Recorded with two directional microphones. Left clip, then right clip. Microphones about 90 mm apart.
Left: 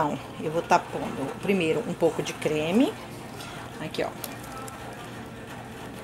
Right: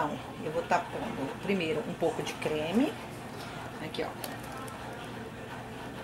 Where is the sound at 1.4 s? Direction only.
40° left (ahead or behind).